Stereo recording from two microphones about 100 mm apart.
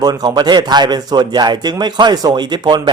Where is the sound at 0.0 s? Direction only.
40° right (ahead or behind).